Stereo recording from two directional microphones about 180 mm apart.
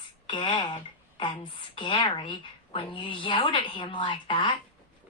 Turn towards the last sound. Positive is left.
turn(degrees=30)  # may be behind; listen again after turning